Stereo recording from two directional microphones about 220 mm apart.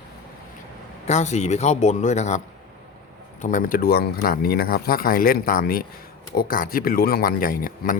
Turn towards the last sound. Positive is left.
turn(degrees=40)  # may be behind; listen again after turning